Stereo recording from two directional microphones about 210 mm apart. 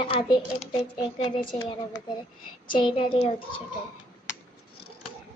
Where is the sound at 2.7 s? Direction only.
25° left (ahead or behind).